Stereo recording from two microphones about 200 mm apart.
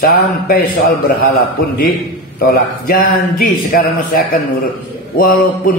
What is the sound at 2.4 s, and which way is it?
A man's voice, 45° left (ahead or behind).